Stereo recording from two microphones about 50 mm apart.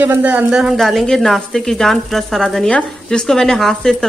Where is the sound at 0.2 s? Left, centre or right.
Right.